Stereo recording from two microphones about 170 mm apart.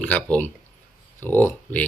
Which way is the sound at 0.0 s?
5° left (ahead or behind).